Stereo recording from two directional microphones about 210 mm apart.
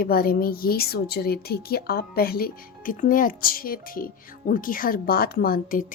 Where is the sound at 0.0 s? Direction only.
45° left (ahead or behind).